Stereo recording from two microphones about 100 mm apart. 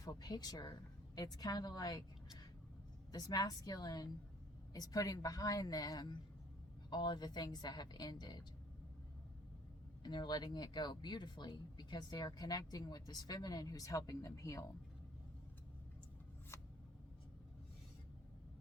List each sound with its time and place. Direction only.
0.0 s a woman's voice: 40° left (ahead or behind)
10.0 s speech: 50° left (ahead or behind); by 14.7 s 35° left (ahead or behind)